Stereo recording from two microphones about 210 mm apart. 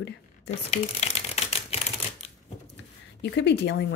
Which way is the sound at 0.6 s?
30° left (ahead or behind).